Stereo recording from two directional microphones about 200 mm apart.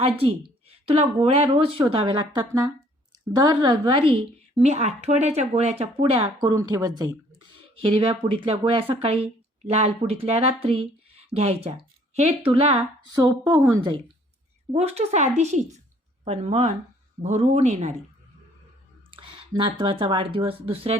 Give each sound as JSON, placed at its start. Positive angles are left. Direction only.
{"t": 0.7, "sound": "a woman's voice", "side_deg": -30}
{"t": 14.7, "sound": "a woman's voice", "side_deg": -30}
{"t": 19.1, "sound": "speech", "side_deg": -25}